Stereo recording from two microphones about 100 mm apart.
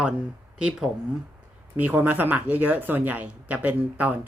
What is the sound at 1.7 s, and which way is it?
Speech, 20° right (ahead or behind).